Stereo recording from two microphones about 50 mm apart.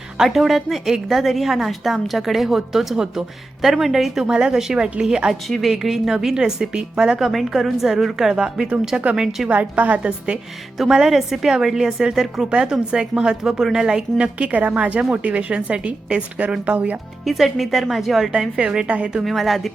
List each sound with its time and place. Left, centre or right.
0.3 s a woman's voice: centre
5.3 s a woman's voice: centre
9.5 s a woman's voice: right
10.8 s a woman's voice: centre
14.5 s a woman's voice: right
17.2 s a woman's voice: centre
18.3 s a woman's voice: centre
19.2 s a woman's voice: centre